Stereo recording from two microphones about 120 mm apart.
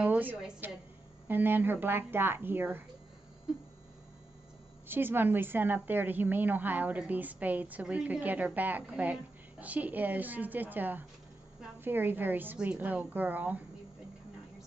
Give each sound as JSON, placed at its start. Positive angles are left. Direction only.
{"t": 0.0, "sound": "a woman's voice", "side_deg": -15}
{"t": 4.8, "sound": "a woman's voice", "side_deg": -15}